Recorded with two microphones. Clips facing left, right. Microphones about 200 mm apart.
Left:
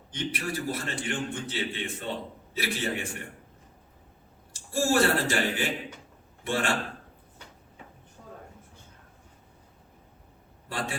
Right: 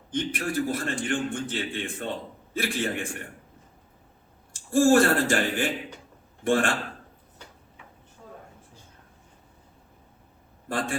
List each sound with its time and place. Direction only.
0.1 s a man's voice: 50° right (ahead or behind)
4.7 s a man's voice: 50° right (ahead or behind)
10.7 s a sound: 50° right (ahead or behind)